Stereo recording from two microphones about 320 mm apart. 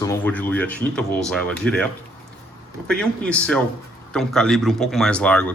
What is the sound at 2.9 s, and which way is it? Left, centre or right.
Speech, centre.